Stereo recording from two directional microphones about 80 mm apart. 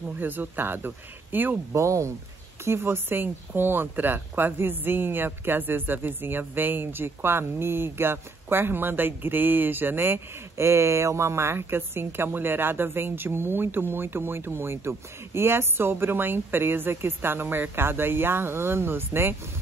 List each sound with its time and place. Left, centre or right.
0.2 s speech: right
1.7 s speech: right